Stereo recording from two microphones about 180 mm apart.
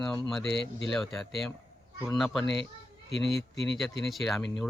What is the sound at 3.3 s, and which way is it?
Speech, 80° left.